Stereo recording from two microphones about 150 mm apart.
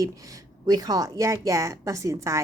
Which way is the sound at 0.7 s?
25° right (ahead or behind).